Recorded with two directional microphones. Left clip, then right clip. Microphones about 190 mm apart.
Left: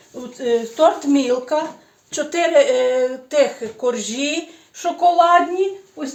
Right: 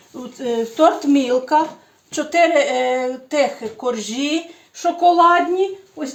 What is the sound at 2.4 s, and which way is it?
Speech, 20° left (ahead or behind).